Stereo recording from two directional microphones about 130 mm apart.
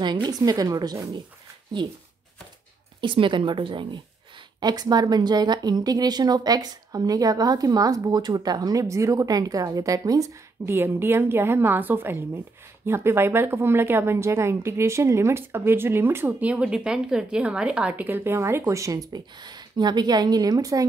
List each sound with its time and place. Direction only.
0.0 s a woman's voice: 35° right (ahead or behind)
3.0 s a woman's voice: 40° right (ahead or behind)